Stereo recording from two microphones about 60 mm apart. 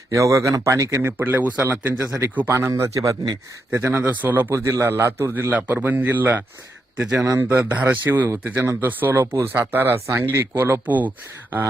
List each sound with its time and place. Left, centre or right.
0.1 s speech: right
3.0 s speech: right
3.7 s speech: right
4.4 s speech: right
5.3 s speech: right
7.0 s a man's voice: centre; by 9.2 s right
9.2 s speech: right
9.5 s speech: right
10.3 s speech: right
10.6 s speech: right